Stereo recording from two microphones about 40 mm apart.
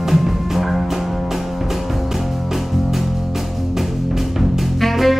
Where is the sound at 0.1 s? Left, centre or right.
Centre.